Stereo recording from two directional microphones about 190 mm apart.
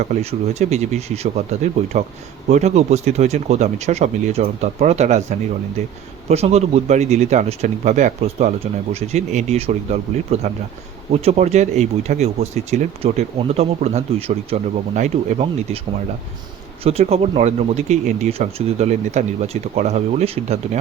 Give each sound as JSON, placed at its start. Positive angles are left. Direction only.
{"t": 0.0, "sound": "speech", "side_deg": -35}
{"t": 6.2, "sound": "speech", "side_deg": -35}
{"t": 16.8, "sound": "speech", "side_deg": -35}